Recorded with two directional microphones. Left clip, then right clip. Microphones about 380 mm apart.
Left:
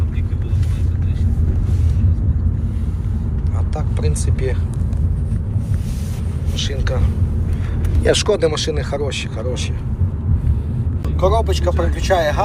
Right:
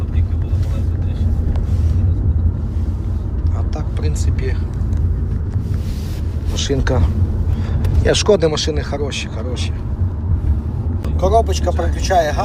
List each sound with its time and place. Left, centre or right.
3.8 s vehicle: centre
6.6 s speech: centre
8.0 s speech: centre
11.2 s speech: centre